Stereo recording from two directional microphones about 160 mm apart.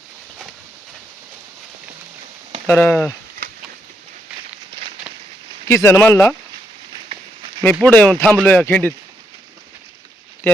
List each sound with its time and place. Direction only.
2.6 s speech: 15° left (ahead or behind)
5.6 s speech: 15° left (ahead or behind)
7.6 s speech: 5° left (ahead or behind)
10.4 s speech: 15° left (ahead or behind)